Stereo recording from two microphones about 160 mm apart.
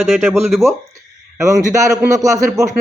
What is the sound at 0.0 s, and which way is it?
Speech, centre (ahead or behind).